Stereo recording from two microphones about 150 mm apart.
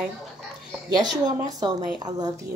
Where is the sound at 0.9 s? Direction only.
25° right (ahead or behind).